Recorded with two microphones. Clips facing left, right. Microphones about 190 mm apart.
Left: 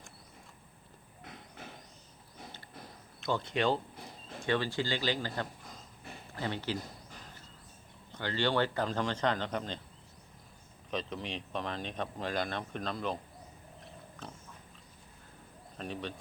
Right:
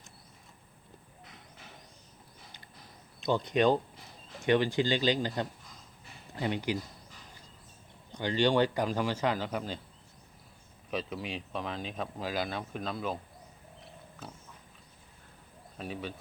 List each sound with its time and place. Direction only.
3.2 s speech: 15° right (ahead or behind)
8.1 s speech: 15° right (ahead or behind)
10.9 s speech: 5° right (ahead or behind)
14.2 s speech: 5° right (ahead or behind)
15.8 s speech: 5° right (ahead or behind)